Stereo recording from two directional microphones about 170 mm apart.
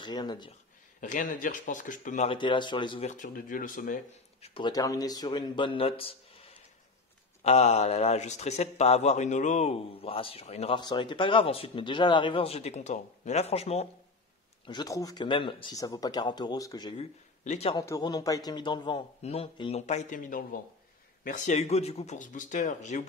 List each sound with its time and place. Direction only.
0.0 s speech: 25° left (ahead or behind)
1.0 s speech: 50° left (ahead or behind)
2.2 s speech: 30° left (ahead or behind)
3.1 s speech: 50° left (ahead or behind)
4.4 s a man's voice: 30° left (ahead or behind)
10.8 s a man's voice: 25° left (ahead or behind)
14.7 s speech: 25° left (ahead or behind)
17.5 s a man's voice: 40° left (ahead or behind)
17.7 s speech: 20° left (ahead or behind)
19.9 s speech: 45° left (ahead or behind)